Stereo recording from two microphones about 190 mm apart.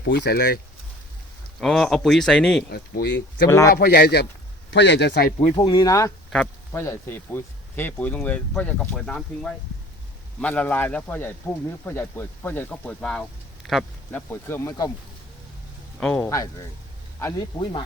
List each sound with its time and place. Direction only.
0.0 s speech: 65° left (ahead or behind)
1.6 s speech: centre (ahead or behind)
2.6 s speech: 55° left (ahead or behind)
3.4 s speech: 15° left (ahead or behind)
3.8 s speech: 55° left (ahead or behind)
4.7 s speech: 70° left (ahead or behind)
5.5 s speech: 20° left (ahead or behind)
16.0 s speech: 5° left (ahead or behind)
16.2 s speech: 15° left (ahead or behind)